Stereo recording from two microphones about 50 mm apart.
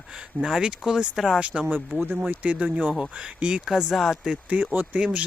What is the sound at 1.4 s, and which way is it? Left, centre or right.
Speech, right.